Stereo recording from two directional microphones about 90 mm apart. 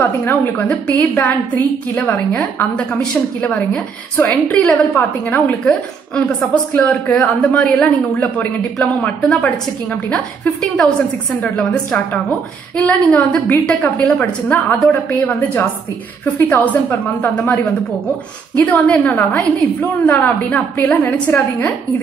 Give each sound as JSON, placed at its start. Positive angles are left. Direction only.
{"t": 0.0, "sound": "a woman's voice", "side_deg": 20}
{"t": 11.4, "sound": "a woman's voice", "side_deg": 10}